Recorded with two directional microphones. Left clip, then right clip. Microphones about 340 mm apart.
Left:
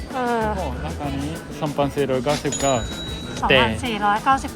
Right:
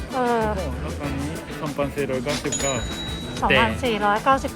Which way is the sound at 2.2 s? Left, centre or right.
Centre.